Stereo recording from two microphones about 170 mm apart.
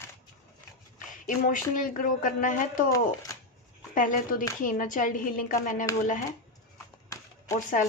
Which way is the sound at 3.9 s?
50° left (ahead or behind).